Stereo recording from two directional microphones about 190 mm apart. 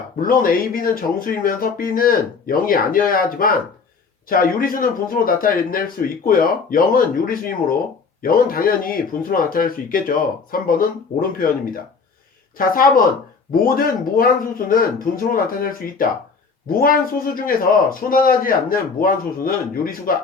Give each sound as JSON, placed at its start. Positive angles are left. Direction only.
{"t": 0.2, "sound": "a man's voice", "side_deg": 50}
{"t": 12.5, "sound": "a man's voice", "side_deg": 50}